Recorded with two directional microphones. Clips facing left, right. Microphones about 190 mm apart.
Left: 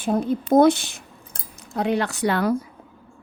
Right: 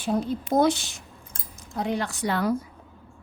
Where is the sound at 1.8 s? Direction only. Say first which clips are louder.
Left 5 dB; 70° left (ahead or behind).